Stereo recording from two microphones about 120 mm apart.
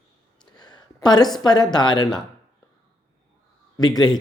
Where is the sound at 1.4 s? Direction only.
35° left (ahead or behind).